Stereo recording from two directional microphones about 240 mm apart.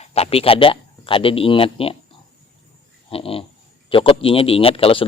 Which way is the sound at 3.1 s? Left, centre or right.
Left.